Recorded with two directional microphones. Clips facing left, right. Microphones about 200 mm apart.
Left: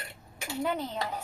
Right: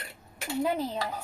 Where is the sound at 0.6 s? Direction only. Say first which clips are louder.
Right 2 dB; 30° right (ahead or behind).